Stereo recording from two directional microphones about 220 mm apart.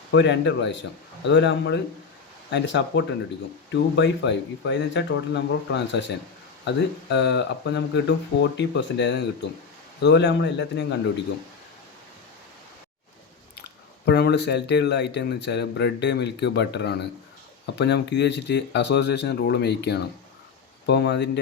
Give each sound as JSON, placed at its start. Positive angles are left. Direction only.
{"t": 0.1, "sound": "a man's voice", "side_deg": 55}
{"t": 13.6, "sound": "speech", "side_deg": 50}